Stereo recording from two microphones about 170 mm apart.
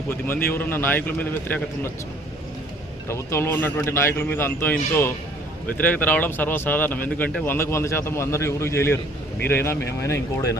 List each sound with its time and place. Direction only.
0.1 s speech: 15° left (ahead or behind)
3.1 s speech: 15° left (ahead or behind)